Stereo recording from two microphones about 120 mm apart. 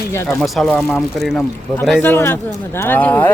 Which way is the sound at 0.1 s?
20° left (ahead or behind).